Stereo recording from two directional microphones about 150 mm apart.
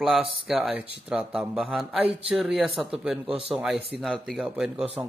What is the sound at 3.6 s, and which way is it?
Speech, 10° right (ahead or behind).